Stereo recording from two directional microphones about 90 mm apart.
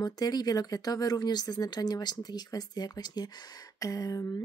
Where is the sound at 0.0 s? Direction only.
45° left (ahead or behind).